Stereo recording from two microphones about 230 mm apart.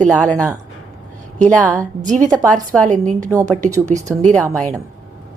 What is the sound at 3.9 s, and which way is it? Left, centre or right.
Speech, centre.